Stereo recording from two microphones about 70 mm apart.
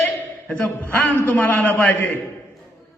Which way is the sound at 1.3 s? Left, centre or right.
Left.